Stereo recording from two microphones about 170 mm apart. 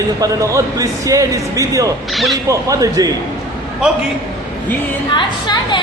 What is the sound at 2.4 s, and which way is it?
Speech, 20° right (ahead or behind).